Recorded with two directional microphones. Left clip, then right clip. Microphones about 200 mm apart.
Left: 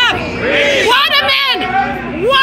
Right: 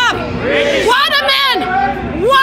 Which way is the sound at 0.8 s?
10° right (ahead or behind).